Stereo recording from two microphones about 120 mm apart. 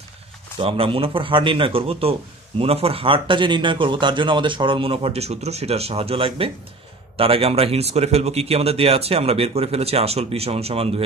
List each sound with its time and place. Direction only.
0.6 s a man's voice: 50° right (ahead or behind)